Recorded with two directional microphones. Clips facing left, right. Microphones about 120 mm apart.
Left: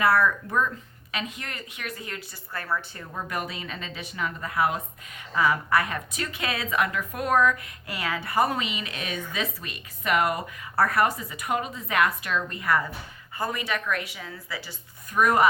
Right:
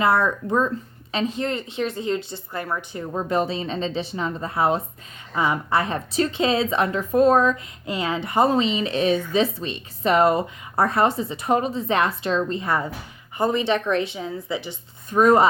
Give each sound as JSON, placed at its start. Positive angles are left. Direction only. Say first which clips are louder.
{"t": 0.0, "sound": "a woman's voice", "louder": "right 2 dB", "side_deg": -25}
{"t": 3.1, "sound": "a woman's voice", "louder": "right 9 dB", "side_deg": -25}